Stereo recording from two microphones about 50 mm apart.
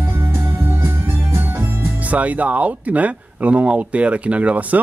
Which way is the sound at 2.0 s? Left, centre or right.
Right.